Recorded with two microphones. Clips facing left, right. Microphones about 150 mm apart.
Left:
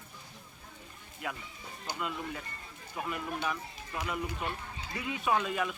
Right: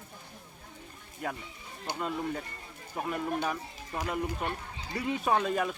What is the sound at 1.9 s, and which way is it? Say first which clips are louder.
Speech: right 2 dB; 65° right (ahead or behind).